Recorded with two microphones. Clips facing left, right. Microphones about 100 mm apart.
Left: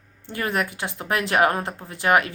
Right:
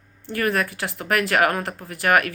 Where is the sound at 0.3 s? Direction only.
20° left (ahead or behind).